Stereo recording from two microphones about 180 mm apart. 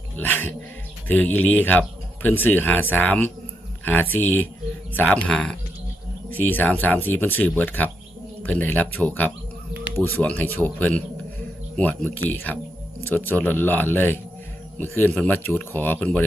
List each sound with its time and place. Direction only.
0.2 s speech: 10° left (ahead or behind)
9.7 s music: 10° right (ahead or behind)
10.0 s speech: 10° left (ahead or behind)